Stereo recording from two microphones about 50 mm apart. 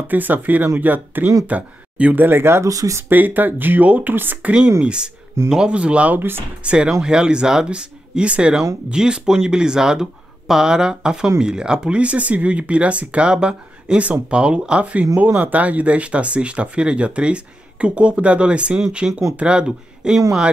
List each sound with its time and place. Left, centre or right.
0.1 s speech: right
2.2 s speech: right
3.1 s speech: right
4.8 s speech: centre
6.1 s speech: right
6.6 s speech: right